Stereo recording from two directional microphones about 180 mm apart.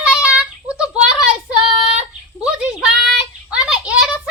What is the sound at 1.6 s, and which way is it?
Child singing, 30° right (ahead or behind).